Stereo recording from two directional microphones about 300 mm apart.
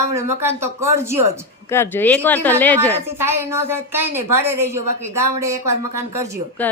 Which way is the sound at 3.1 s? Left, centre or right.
Centre.